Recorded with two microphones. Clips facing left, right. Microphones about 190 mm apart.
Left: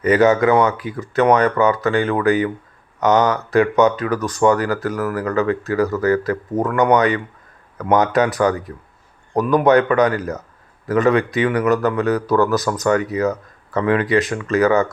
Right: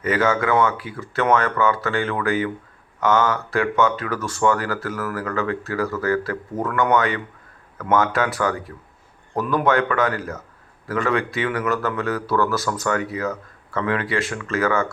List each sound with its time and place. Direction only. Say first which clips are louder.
0.0 s speech: left 7 dB; 20° left (ahead or behind)